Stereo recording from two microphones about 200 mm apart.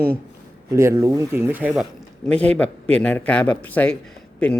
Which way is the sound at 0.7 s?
15° right (ahead or behind).